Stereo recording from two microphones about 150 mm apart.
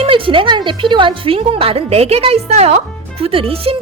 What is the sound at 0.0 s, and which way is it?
A woman's voice, 35° right (ahead or behind).